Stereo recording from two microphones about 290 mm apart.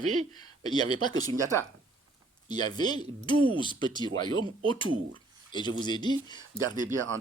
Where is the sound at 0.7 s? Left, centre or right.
Centre.